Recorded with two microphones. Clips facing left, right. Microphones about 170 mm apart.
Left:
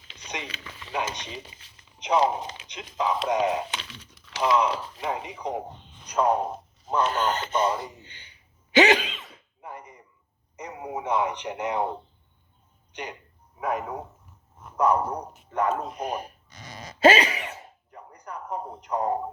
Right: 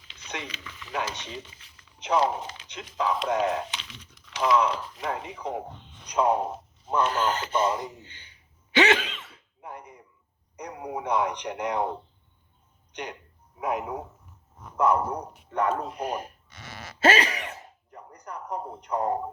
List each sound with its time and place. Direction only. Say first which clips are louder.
0.6 s speech: left 1 dB; 40° left (ahead or behind)
1.0 s speech: left 1 dB; 15° left (ahead or behind)
3.7 s crumpling: left 4 dB; 50° left (ahead or behind)
4.6 s speech: left 1 dB; 5° left (ahead or behind)
6.1 s a man's voice: even; 10° right (ahead or behind)
6.4 s speech: left 1 dB; 5° left (ahead or behind)
7.1 s speech: even; 20° left (ahead or behind)
8.8 s speech: left 2 dB; 15° left (ahead or behind)
9.6 s a sound: even; 5° left (ahead or behind)
10.6 s speech: even; 5° left (ahead or behind)
13.6 s a man's voice: even; 10° right (ahead or behind)
14.8 s speech: left 1 dB; 15° left (ahead or behind)
16.7 s a sound: left 4 dB; 15° left (ahead or behind)
18.2 s speech: left 1 dB; 10° left (ahead or behind)